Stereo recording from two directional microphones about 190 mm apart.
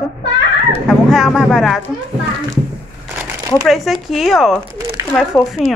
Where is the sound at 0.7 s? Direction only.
Centre (ahead or behind).